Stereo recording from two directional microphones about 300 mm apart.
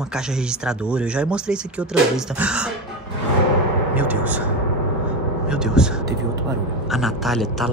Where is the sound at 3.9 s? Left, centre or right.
Centre.